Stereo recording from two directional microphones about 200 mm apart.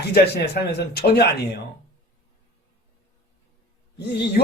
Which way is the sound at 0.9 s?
55° left (ahead or behind).